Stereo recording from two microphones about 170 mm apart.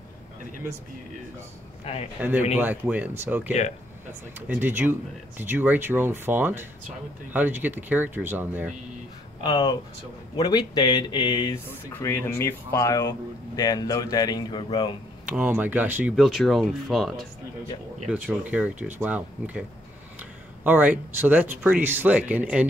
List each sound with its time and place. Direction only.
2.2 s speech: 10° right (ahead or behind)
9.4 s speech: 25° left (ahead or behind)
11.6 s speech: 15° left (ahead or behind)
15.3 s speech: 10° right (ahead or behind)